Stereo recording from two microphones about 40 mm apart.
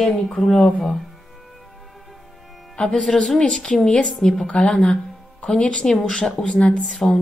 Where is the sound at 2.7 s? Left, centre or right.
Centre.